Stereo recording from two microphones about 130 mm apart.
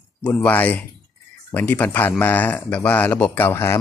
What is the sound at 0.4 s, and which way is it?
Speech, 15° left (ahead or behind).